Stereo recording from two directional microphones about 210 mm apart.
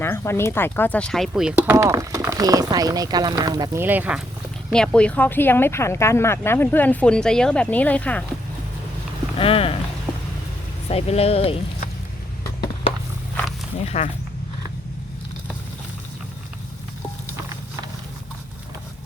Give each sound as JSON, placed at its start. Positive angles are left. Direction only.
{"t": 0.0, "sound": "speech", "side_deg": 10}
{"t": 1.7, "sound": "speech", "side_deg": -15}
{"t": 4.7, "sound": "speech", "side_deg": 5}
{"t": 9.4, "sound": "speech", "side_deg": 25}
{"t": 10.8, "sound": "speech", "side_deg": 30}
{"t": 13.7, "sound": "speech", "side_deg": 30}